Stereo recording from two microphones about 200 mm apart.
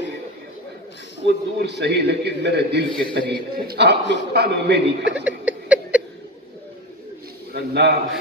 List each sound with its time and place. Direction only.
1.2 s a man's voice: 55° right (ahead or behind)
5.2 s a sound: 5° right (ahead or behind)
7.5 s a man's voice: 55° right (ahead or behind)